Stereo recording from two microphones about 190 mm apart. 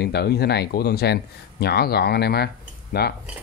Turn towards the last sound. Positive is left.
turn(degrees=55)  # may be behind; listen again after turning